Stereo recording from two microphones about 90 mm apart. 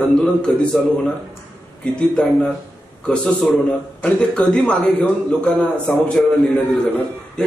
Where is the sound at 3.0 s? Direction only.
10° left (ahead or behind).